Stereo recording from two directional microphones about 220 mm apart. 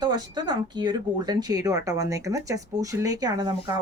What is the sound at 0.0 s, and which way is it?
A woman's voice, 20° right (ahead or behind).